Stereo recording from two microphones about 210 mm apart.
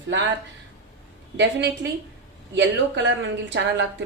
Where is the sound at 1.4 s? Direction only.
55° right (ahead or behind).